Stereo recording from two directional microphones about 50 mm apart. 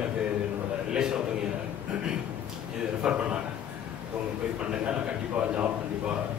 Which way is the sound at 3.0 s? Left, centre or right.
Centre.